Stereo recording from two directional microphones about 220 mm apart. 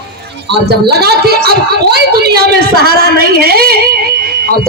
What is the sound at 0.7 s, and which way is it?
A woman's voice, 45° right (ahead or behind).